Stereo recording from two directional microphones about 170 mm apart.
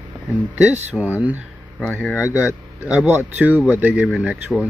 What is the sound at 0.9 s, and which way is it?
Speech, 10° right (ahead or behind).